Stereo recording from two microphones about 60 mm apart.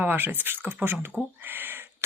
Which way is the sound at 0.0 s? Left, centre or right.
Right.